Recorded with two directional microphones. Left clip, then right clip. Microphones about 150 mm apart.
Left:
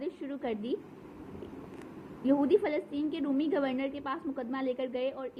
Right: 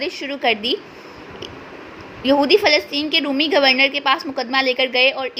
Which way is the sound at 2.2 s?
15° right (ahead or behind).